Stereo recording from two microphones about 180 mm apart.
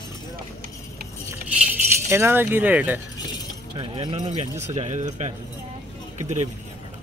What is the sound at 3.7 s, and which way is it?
Speech, 30° right (ahead or behind).